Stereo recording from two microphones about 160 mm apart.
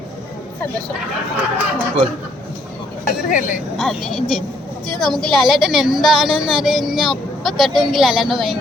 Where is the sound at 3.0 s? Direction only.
55° left (ahead or behind).